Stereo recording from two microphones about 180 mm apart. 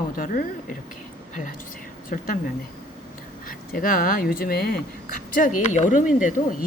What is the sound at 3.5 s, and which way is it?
Speech, 50° left (ahead or behind).